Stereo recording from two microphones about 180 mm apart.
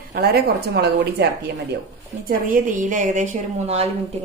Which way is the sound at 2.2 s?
50° right (ahead or behind).